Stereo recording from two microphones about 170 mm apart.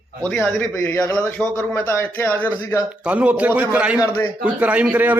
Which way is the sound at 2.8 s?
5° right (ahead or behind).